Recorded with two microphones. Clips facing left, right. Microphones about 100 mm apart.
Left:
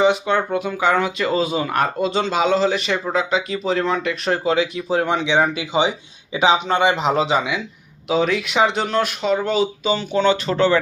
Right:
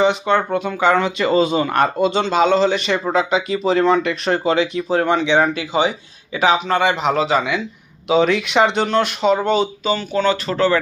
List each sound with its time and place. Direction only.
0.0 s speech: 10° left (ahead or behind)
9.8 s speech: 20° left (ahead or behind)